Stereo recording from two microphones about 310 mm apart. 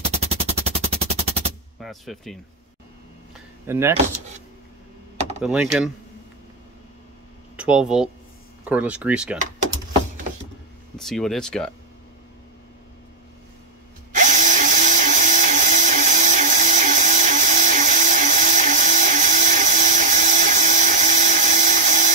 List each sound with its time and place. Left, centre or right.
0.1 s machine gun: centre
1.8 s speech: centre
3.6 s speech: centre
5.4 s speech: centre
7.5 s speech: centre
11.0 s speech: centre
14.1 s drill: right